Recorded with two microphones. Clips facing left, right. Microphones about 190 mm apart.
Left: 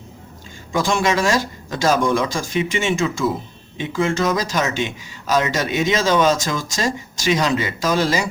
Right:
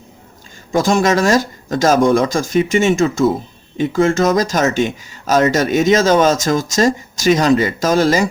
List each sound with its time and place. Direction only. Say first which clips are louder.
0.7 s a man's voice: right 5 dB; 45° right (ahead or behind)